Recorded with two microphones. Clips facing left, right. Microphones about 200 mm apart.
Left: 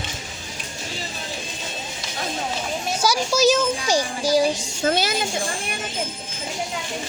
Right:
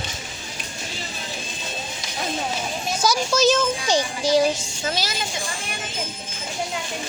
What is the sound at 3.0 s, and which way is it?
Children playing, 10° left (ahead or behind).